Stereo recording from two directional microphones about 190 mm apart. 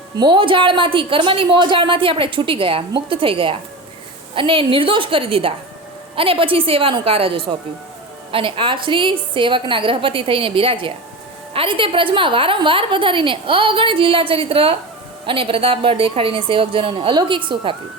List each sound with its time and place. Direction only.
0.2 s a woman's voice: 25° right (ahead or behind)